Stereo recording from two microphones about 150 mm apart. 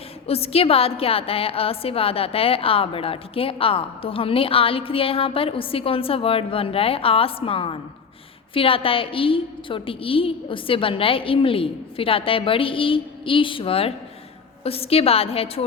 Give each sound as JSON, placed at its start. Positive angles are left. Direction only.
{"t": 0.3, "sound": "a woman's voice", "side_deg": 40}